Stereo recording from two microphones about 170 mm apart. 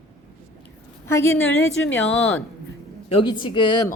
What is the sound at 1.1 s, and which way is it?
A woman's voice, 15° left (ahead or behind).